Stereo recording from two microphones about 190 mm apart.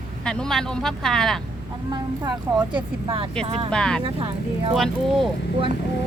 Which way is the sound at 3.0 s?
30° right (ahead or behind).